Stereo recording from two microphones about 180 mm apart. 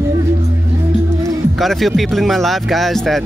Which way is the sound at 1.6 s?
Centre (ahead or behind).